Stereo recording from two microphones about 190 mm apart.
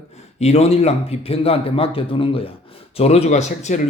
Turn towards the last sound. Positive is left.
turn(degrees=35)  # may be behind; listen again after turning